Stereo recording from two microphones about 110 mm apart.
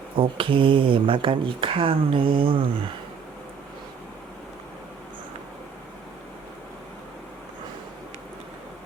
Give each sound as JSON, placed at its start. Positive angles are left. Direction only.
{"t": 0.2, "sound": "speech", "side_deg": -55}